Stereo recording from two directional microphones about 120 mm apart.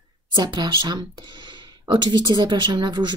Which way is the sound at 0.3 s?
35° right (ahead or behind).